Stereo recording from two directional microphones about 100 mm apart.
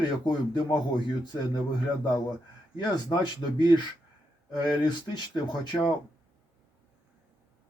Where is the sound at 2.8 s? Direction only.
45° left (ahead or behind).